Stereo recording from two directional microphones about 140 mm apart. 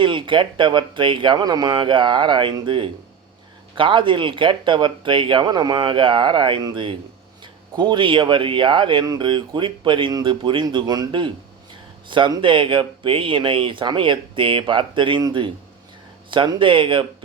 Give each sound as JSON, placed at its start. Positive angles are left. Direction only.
{"t": 0.0, "sound": "speech", "side_deg": -35}